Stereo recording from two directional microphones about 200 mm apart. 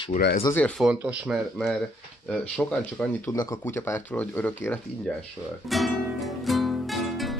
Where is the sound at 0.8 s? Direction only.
5° right (ahead or behind).